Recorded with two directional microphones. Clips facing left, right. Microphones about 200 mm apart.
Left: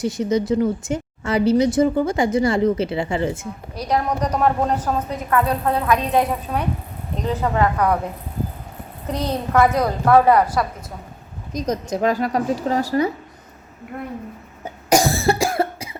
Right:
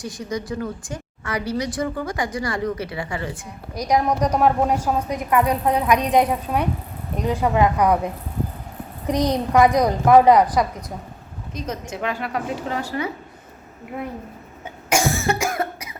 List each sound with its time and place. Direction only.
0.0 s speech: 25° left (ahead or behind)
3.8 s a woman's voice: 10° right (ahead or behind)
9.0 s a woman's voice: 15° right (ahead or behind)
11.5 s a woman's voice: 40° left (ahead or behind)
14.6 s cough: 35° left (ahead or behind)